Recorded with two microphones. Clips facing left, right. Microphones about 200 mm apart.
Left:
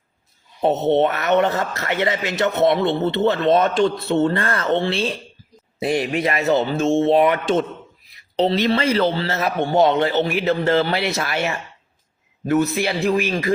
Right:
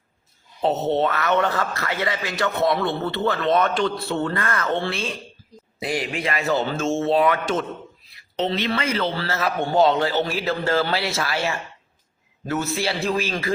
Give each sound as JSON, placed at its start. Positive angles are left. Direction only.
{"t": 0.8, "sound": "a man's voice", "side_deg": 20}
{"t": 8.4, "sound": "a woman's voice", "side_deg": 40}
{"t": 9.1, "sound": "a man's voice", "side_deg": 20}